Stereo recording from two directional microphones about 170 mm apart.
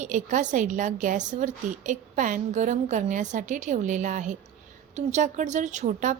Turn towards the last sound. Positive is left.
turn(degrees=-45)  # may be behind; listen again after turning